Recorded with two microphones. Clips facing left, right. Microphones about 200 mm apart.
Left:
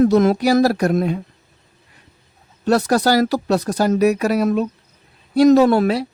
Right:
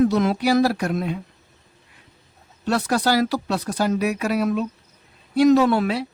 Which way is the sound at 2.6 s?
40° left (ahead or behind).